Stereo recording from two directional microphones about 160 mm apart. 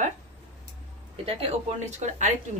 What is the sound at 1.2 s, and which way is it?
Speech, 40° right (ahead or behind).